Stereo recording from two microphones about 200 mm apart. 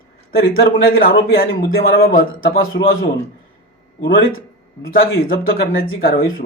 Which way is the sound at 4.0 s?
50° left (ahead or behind).